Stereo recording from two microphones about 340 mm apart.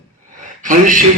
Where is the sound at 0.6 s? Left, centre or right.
Right.